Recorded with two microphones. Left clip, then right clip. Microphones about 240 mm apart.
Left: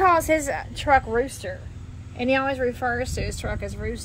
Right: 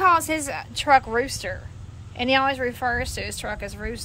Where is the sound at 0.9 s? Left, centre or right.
Centre.